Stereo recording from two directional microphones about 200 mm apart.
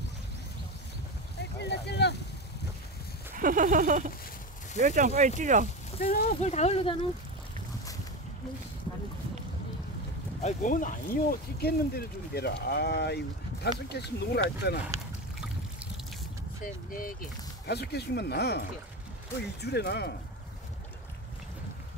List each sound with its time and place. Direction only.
1.4 s speech: 55° left (ahead or behind)
3.3 s a sound: 40° right (ahead or behind)
5.9 s speech: 50° left (ahead or behind)
6.4 s speech: 35° left (ahead or behind)
10.4 s speech: 40° left (ahead or behind)
16.6 s speech: 45° left (ahead or behind)